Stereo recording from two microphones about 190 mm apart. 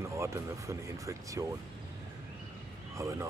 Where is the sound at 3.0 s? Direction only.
15° right (ahead or behind).